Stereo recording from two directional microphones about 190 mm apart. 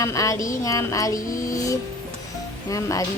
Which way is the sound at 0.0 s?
15° left (ahead or behind).